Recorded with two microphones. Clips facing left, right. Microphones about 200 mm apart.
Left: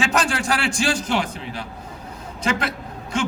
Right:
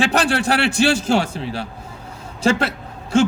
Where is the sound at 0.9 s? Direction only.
30° right (ahead or behind).